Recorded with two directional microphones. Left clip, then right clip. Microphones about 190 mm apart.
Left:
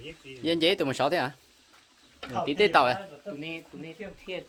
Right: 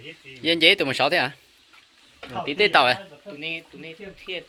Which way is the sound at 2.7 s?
5° right (ahead or behind).